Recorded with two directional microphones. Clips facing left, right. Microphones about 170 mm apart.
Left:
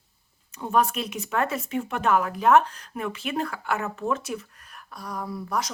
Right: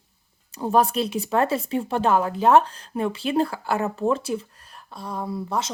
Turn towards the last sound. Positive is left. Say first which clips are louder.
# right 2 dB
turn(degrees=-25)  # may be behind; listen again after turning